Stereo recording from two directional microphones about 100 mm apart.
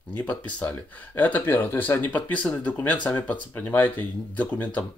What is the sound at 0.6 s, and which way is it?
Speech, 15° left (ahead or behind).